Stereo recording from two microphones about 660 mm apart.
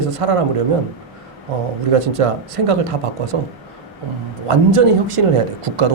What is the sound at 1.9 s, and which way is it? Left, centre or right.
Speech, right.